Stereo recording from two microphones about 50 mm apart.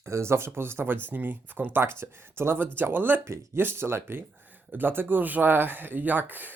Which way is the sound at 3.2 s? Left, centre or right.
Right.